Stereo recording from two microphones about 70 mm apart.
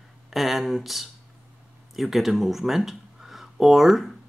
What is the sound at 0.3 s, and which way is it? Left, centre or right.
Speech, centre.